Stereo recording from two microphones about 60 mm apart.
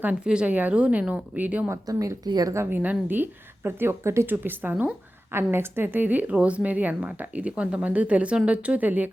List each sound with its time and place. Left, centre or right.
0.4 s speech: right
1.9 s speech: right
2.6 s a woman's voice: right
4.3 s a woman's voice: right
5.3 s speech: right